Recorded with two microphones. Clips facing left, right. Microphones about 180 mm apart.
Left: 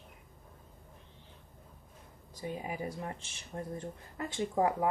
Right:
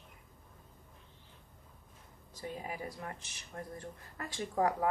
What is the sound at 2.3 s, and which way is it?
Speech, 15° left (ahead or behind).